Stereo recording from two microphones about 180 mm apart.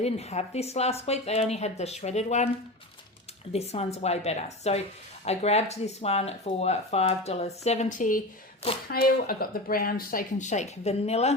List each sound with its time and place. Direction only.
0.0 s speech: 35° left (ahead or behind)
3.5 s speech: 35° left (ahead or behind)